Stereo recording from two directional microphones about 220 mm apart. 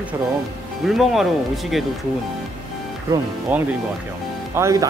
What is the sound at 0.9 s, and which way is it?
Speech, centre (ahead or behind).